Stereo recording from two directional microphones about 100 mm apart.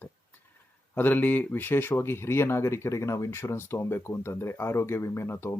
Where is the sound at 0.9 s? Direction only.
20° left (ahead or behind).